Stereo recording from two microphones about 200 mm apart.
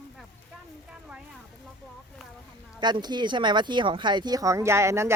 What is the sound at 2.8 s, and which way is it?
Speech, 20° right (ahead or behind).